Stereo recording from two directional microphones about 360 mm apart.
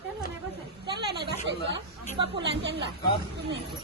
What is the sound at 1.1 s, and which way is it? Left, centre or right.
Speech, right.